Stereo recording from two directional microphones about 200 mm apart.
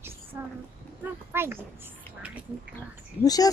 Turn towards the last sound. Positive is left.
turn(degrees=20)  # may be behind; listen again after turning